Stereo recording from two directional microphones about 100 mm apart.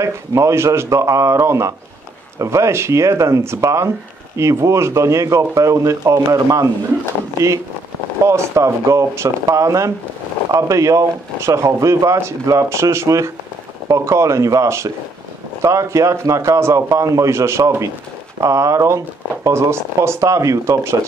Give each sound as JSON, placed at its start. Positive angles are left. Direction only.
{"t": 0.0, "sound": "speech", "side_deg": -30}
{"t": 8.3, "sound": "speech", "side_deg": -30}